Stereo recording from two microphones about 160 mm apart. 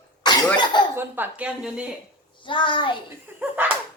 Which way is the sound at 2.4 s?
30° left (ahead or behind).